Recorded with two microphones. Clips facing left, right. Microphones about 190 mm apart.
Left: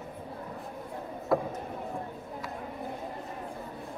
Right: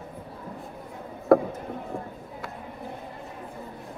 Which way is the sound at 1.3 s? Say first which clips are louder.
Right 9 dB; 60° right (ahead or behind).